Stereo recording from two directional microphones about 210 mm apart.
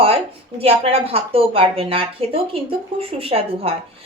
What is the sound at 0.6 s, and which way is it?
A woman's voice, 30° right (ahead or behind).